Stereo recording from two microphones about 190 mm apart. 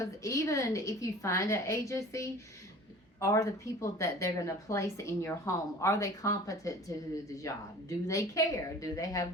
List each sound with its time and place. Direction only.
0.0 s a woman's voice: 15° left (ahead or behind)